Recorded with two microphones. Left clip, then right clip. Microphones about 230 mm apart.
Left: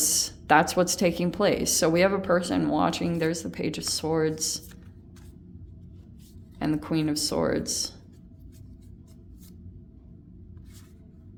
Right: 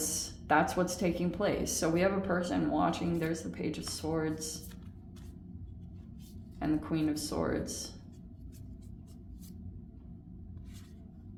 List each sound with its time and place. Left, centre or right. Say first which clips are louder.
0.0 s speech: left 10 dB; left
6.6 s speech: left 5 dB; left